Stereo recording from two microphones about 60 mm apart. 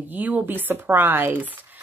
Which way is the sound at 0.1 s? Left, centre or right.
Right.